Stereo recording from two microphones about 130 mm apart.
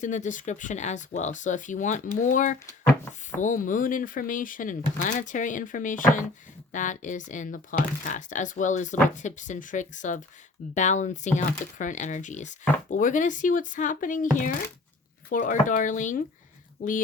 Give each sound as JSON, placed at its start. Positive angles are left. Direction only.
{"t": 0.0, "sound": "speech", "side_deg": 70}
{"t": 3.4, "sound": "speech", "side_deg": 90}
{"t": 12.9, "sound": "speech", "side_deg": 85}
{"t": 15.3, "sound": "speech", "side_deg": 80}